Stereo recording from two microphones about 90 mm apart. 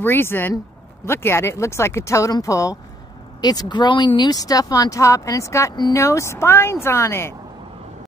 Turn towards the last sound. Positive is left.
turn(degrees=30)  # may be behind; listen again after turning